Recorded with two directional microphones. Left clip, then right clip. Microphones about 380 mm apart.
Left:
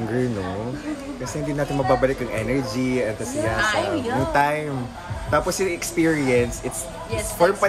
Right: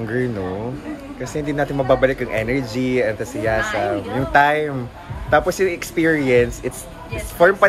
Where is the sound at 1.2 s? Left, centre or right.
Centre.